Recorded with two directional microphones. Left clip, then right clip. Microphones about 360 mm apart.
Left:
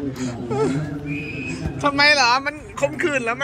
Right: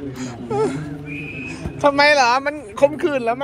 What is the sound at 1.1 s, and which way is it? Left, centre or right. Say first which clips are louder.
Speech: even; centre.